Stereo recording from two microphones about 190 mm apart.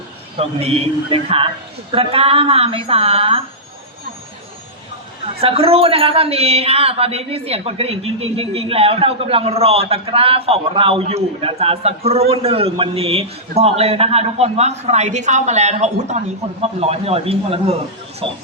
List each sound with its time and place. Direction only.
0.3 s a man's voice: 30° right (ahead or behind)
5.2 s a man's voice: 30° right (ahead or behind)